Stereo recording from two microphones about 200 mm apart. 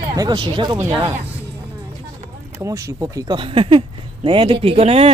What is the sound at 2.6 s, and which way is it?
Speech, 15° right (ahead or behind).